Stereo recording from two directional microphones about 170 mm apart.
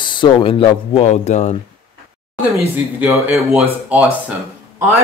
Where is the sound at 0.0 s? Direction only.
30° left (ahead or behind).